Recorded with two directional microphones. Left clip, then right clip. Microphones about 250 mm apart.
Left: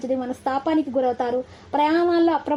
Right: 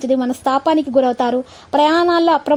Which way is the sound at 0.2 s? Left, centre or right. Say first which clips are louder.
Right 8 dB; right.